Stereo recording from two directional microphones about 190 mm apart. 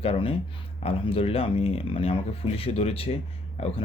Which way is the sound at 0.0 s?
30° left (ahead or behind).